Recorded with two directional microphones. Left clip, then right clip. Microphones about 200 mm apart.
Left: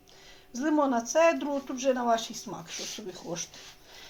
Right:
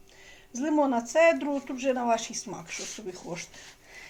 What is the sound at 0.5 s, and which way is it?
Speech, 10° left (ahead or behind).